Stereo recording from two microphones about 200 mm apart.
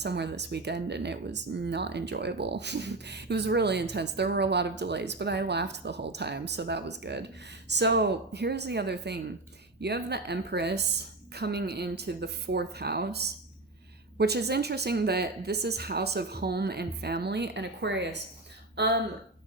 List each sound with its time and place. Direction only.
0.0 s speech: 55° right (ahead or behind)